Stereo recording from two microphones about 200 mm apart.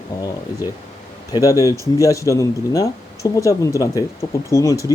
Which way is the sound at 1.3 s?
15° left (ahead or behind).